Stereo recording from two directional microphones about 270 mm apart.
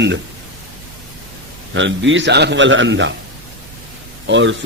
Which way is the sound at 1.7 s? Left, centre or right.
Right.